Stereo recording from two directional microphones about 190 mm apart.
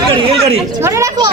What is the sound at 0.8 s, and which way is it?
Speech, 15° right (ahead or behind).